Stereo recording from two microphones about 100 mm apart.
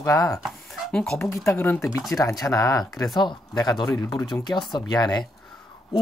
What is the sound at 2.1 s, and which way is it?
Speech, 35° left (ahead or behind).